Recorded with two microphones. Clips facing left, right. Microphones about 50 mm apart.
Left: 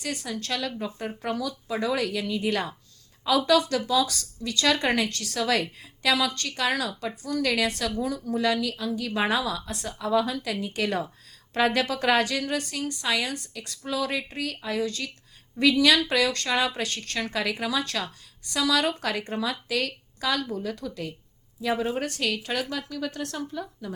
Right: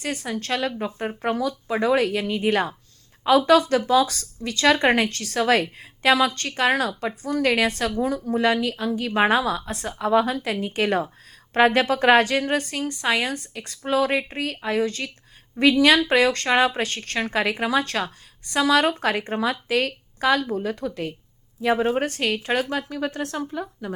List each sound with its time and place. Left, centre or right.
0.0 s speech: right